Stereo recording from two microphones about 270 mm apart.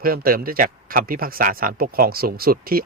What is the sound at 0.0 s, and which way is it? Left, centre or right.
Speech, right.